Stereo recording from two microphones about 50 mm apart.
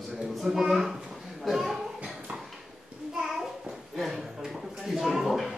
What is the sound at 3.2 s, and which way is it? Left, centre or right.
Child singing, centre.